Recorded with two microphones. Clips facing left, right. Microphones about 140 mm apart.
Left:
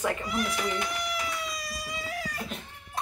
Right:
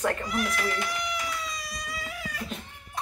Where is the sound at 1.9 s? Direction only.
35° left (ahead or behind).